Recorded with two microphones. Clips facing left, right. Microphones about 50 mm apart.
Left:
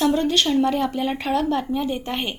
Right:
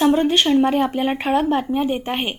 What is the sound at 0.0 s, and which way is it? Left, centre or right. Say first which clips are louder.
Speech: right 3 dB; right.